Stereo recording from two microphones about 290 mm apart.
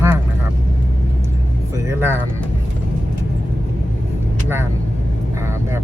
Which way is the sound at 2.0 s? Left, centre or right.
Centre.